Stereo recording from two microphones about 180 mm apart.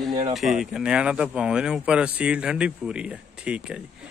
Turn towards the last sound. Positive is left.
turn(degrees=-5)  # may be behind; listen again after turning